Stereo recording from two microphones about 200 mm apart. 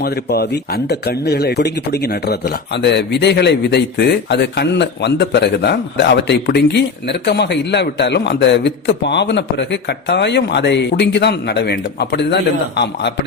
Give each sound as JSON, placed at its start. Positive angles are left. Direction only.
{"t": 0.0, "sound": "speech", "side_deg": 55}